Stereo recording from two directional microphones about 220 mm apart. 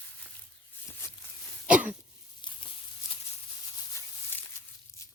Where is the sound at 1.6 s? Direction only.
5° right (ahead or behind).